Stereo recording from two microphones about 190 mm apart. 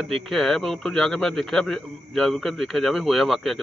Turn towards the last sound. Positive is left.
turn(degrees=0)  # may be behind; listen again after turning